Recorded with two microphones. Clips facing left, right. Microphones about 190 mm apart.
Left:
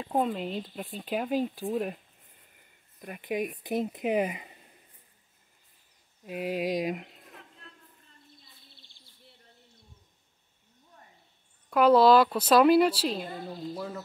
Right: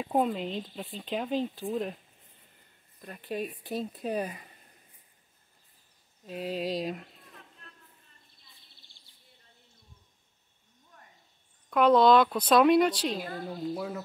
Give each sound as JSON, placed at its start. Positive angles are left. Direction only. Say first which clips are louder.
{"t": 0.0, "sound": "speech", "louder": "right 1 dB", "side_deg": 0}
{"t": 3.0, "sound": "speech", "louder": "left 3 dB", "side_deg": 15}
{"t": 6.2, "sound": "speech", "louder": "left 2 dB", "side_deg": 10}
{"t": 11.7, "sound": "speech", "louder": "left 1 dB", "side_deg": 5}
{"t": 13.6, "sound": "a child's voice", "louder": "right 4 dB", "side_deg": -5}